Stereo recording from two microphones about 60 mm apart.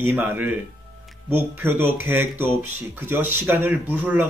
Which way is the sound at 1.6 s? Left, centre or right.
Right.